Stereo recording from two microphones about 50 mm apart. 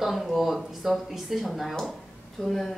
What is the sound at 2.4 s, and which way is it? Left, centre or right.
Speech, centre.